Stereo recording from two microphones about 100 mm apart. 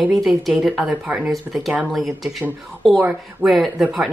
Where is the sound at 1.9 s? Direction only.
Centre (ahead or behind).